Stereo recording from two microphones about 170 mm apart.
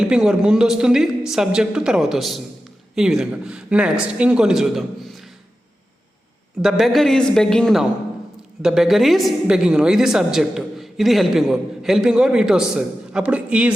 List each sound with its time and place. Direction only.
0.1 s a woman's voice: 5° right (ahead or behind)
6.6 s a woman's voice: centre (ahead or behind)